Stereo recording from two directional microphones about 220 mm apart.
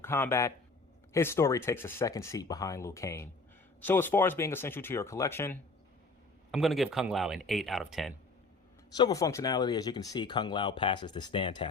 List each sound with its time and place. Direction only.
0.0 s speech: 10° left (ahead or behind)
6.5 s speech: centre (ahead or behind)
8.9 s speech: 15° left (ahead or behind)